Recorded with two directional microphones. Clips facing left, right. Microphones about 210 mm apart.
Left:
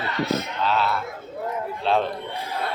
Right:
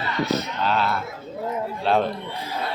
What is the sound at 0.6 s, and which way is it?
A man's voice, centre (ahead or behind).